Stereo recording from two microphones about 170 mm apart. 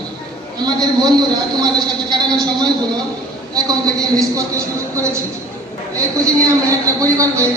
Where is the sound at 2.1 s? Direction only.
25° right (ahead or behind).